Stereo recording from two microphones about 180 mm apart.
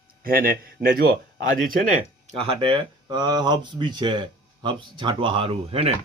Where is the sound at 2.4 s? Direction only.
30° right (ahead or behind).